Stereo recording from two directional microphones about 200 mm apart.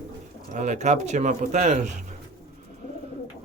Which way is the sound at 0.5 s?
40° right (ahead or behind).